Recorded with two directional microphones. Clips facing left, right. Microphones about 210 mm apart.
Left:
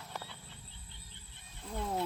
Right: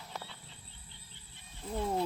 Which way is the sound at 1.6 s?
5° right (ahead or behind).